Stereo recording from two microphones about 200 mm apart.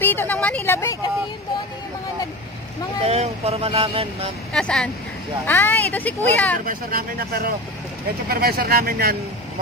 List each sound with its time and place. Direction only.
0.0 s a sound: 10° left (ahead or behind)
3.1 s speech: 30° right (ahead or behind)
4.6 s speech: 5° left (ahead or behind)
6.6 s speech: 45° right (ahead or behind)